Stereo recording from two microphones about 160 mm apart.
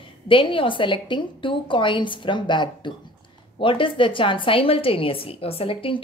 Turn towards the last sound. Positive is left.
turn(degrees=35)  # may be behind; listen again after turning